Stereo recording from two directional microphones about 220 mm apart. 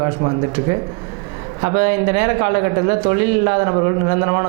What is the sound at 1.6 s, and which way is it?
Speech, 15° right (ahead or behind).